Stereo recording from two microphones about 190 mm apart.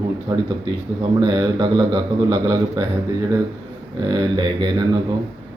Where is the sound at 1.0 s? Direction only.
25° right (ahead or behind).